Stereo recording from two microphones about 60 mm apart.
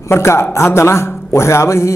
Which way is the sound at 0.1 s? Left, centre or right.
Left.